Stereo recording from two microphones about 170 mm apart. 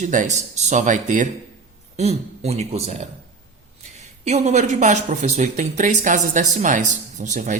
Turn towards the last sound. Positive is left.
turn(degrees=-45)  # may be behind; listen again after turning